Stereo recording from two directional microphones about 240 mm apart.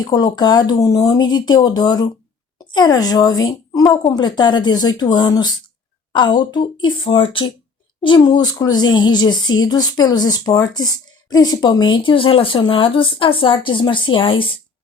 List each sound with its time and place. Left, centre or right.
0.0 s a woman's voice: centre